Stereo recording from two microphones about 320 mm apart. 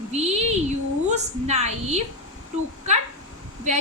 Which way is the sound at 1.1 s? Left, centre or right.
Right.